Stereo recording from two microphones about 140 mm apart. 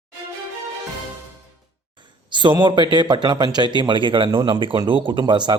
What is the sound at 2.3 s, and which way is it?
A man's voice, 35° right (ahead or behind).